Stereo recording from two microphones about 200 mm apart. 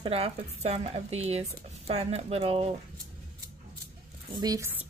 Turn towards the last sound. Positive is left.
turn(degrees=-15)  # may be behind; listen again after turning